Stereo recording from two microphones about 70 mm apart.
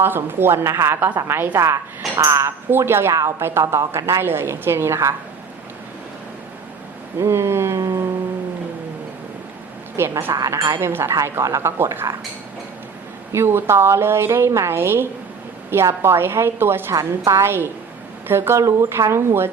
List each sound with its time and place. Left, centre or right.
0.0 s a woman's voice: right
1.5 s speech: right
2.6 s a woman's voice: right
7.2 s speech: right
7.8 s music: right
10.0 s a woman's voice: right
13.3 s a woman's voice: right
16.9 s speech: right
17.4 s a woman's voice: right